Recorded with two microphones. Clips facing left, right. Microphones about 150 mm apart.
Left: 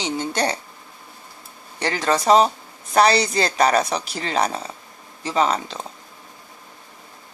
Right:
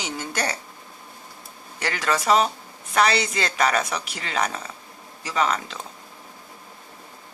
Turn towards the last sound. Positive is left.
turn(degrees=30)  # may be behind; listen again after turning